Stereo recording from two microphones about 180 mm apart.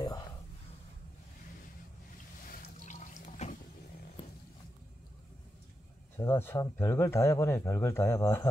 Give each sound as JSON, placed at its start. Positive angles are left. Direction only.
{"t": 2.6, "sound": "water", "side_deg": 45}
{"t": 6.1, "sound": "speech", "side_deg": 10}